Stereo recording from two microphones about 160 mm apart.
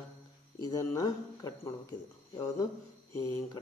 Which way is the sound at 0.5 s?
25° left (ahead or behind).